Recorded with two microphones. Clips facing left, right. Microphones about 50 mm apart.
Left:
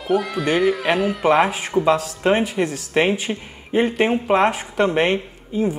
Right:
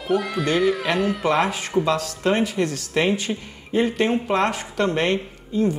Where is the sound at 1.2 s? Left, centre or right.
Centre.